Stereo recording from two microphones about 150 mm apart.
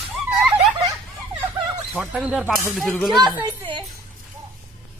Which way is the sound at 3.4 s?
30° right (ahead or behind).